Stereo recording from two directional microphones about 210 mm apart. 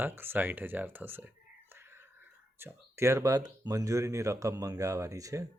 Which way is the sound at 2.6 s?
15° right (ahead or behind).